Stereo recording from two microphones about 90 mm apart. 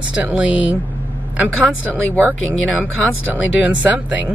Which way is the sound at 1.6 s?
15° left (ahead or behind).